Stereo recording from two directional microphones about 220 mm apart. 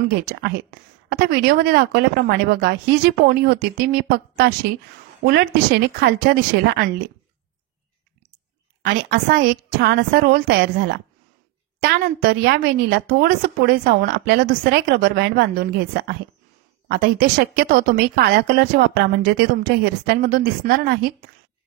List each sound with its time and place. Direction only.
0.1 s a woman's voice: 45° right (ahead or behind)
8.8 s a woman's voice: 45° right (ahead or behind)